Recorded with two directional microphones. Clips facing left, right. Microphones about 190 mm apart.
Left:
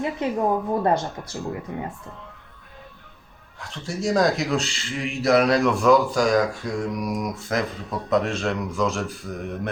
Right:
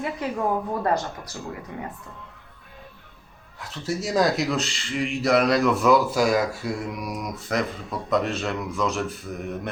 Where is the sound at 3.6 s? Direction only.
5° right (ahead or behind).